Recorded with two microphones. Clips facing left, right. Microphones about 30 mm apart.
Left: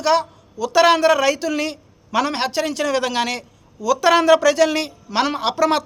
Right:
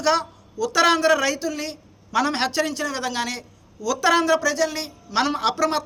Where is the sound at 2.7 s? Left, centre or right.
Left.